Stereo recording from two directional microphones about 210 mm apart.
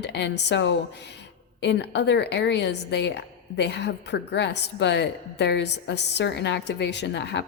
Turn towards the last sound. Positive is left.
turn(degrees=55)  # may be behind; listen again after turning